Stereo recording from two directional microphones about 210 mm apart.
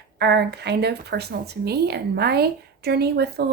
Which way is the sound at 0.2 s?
50° right (ahead or behind).